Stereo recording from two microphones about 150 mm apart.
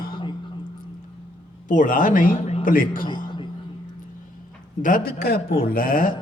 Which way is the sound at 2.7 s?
65° left (ahead or behind).